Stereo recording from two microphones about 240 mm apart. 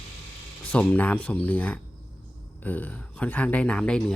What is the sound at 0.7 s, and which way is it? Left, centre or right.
Speech, centre.